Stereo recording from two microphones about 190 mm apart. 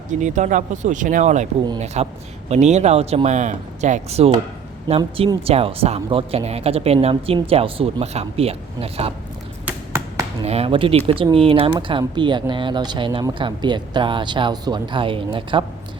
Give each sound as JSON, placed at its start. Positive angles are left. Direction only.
{"t": 0.1, "sound": "speech", "side_deg": -40}
{"t": 9.6, "sound": "a sound", "side_deg": -15}
{"t": 10.4, "sound": "speech", "side_deg": -30}